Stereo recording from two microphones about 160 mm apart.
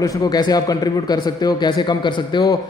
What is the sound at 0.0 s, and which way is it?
A man's voice, 25° left (ahead or behind).